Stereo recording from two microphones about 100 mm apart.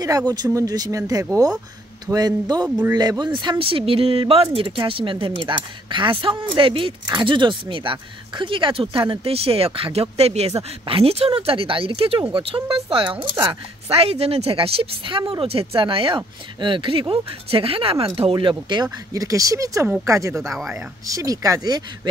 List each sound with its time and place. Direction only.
0.3 s speech: 35° right (ahead or behind); by 10.5 s 90° right
10.9 s speech: 75° right (ahead or behind)
13.5 s a woman's voice: 75° right (ahead or behind)
18.3 s speech: 50° right (ahead or behind)